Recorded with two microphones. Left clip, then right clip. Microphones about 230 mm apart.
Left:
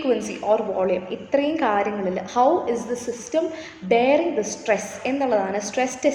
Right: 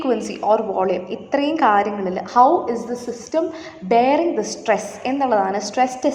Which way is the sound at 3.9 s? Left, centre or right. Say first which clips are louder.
Right 2 dB; right.